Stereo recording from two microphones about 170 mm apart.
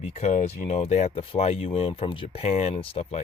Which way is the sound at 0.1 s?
40° left (ahead or behind).